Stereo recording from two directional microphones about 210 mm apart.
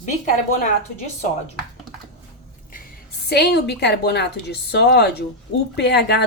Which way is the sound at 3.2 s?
50° left (ahead or behind).